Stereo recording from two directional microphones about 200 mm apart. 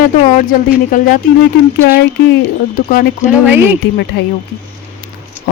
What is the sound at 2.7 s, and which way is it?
Speech, 50° left (ahead or behind).